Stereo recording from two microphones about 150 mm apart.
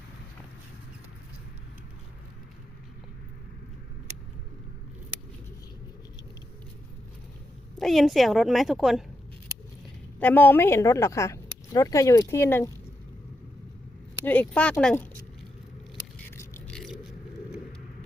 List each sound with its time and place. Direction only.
7.8 s a woman's voice: centre (ahead or behind)
10.2 s speech: 10° left (ahead or behind)
14.3 s speech: 10° left (ahead or behind)
16.1 s scrape: 15° left (ahead or behind)
16.7 s vehicle: centre (ahead or behind)